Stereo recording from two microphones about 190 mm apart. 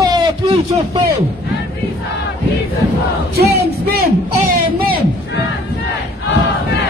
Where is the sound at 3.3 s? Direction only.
55° right (ahead or behind).